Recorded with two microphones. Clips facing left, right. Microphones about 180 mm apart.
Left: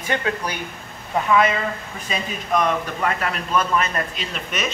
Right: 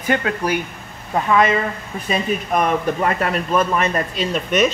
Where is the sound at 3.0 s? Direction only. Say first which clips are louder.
Right 4 dB; 40° right (ahead or behind).